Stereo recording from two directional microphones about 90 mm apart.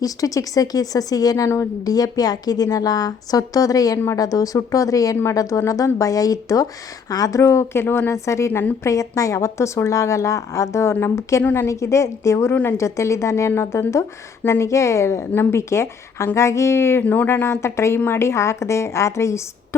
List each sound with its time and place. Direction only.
0.0 s a woman's voice: 40° left (ahead or behind)
17.0 s speech: 20° left (ahead or behind)